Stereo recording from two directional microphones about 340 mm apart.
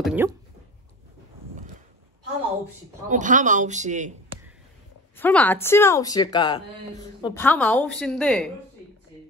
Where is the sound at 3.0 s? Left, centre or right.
Right.